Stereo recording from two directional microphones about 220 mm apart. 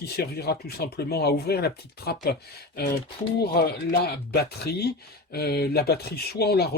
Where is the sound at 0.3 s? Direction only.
45° left (ahead or behind).